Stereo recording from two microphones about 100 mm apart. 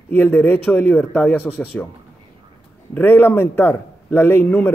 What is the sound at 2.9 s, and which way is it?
A man's voice, 20° left (ahead or behind).